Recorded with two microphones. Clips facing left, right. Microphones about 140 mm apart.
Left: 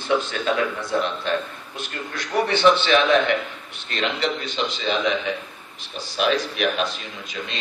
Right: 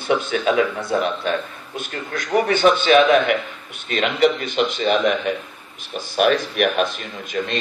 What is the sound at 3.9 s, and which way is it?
A man's voice, 50° right (ahead or behind).